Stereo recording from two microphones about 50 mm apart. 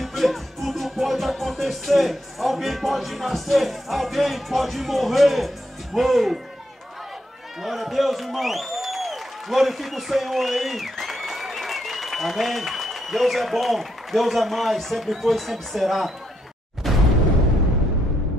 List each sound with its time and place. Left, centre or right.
0.0 s music: centre
5.9 s speech: centre
7.6 s a man's voice: centre
16.8 s a sound: centre